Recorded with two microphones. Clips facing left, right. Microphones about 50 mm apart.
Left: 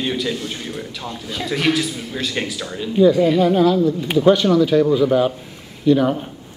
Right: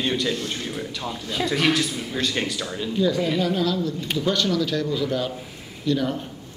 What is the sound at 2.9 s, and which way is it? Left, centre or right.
Speech, centre.